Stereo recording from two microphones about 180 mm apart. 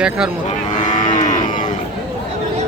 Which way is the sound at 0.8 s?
45° left (ahead or behind).